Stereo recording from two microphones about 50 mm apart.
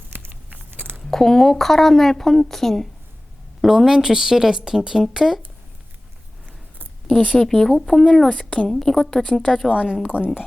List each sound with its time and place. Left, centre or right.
0.1 s a sound: right
1.1 s speech: centre
3.6 s a woman's voice: centre
7.3 s speech: centre
9.7 s a woman's voice: centre